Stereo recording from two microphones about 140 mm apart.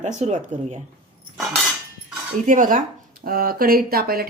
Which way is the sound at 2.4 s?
70° right (ahead or behind).